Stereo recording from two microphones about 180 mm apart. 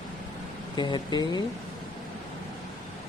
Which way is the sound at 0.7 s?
25° left (ahead or behind).